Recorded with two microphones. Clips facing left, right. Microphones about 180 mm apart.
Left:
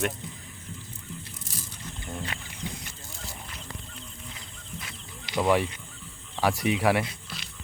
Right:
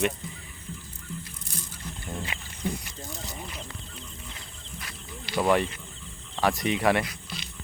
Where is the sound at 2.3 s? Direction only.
10° right (ahead or behind).